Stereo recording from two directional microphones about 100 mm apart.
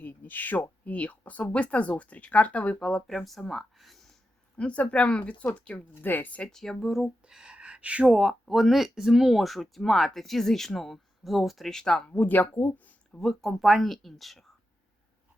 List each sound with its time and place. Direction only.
0.0 s a sound: 15° left (ahead or behind)
0.9 s speech: 15° left (ahead or behind)
13.1 s speech: centre (ahead or behind)